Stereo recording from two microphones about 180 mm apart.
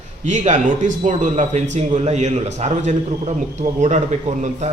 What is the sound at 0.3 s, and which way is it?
A man's voice, 40° right (ahead or behind).